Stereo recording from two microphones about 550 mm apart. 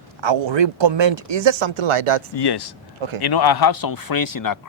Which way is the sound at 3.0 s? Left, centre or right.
Right.